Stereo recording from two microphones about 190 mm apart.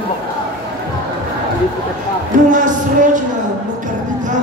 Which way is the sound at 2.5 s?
40° right (ahead or behind).